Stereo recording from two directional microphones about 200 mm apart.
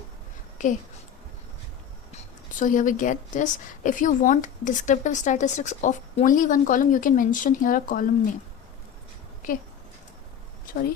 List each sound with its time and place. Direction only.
0.6 s a woman's voice: 40° left (ahead or behind)
2.1 s a woman's voice: 40° left (ahead or behind)